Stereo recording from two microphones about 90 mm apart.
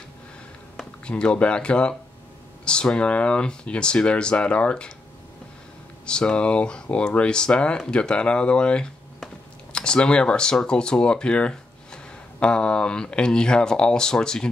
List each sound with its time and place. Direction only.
0.7 s speech: 10° left (ahead or behind)
6.0 s speech: 10° left (ahead or behind)